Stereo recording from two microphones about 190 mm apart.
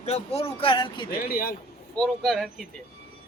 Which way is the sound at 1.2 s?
50° left (ahead or behind).